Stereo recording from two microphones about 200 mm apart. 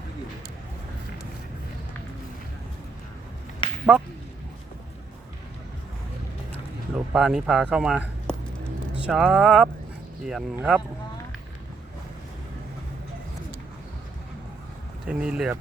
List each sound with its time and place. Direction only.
3.6 s a sound: 25° left (ahead or behind)
7.1 s speech: 5° right (ahead or behind)
15.0 s speech: 5° right (ahead or behind)